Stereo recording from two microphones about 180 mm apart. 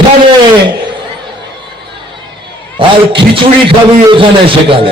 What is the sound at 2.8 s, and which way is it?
A man's voice, 30° right (ahead or behind).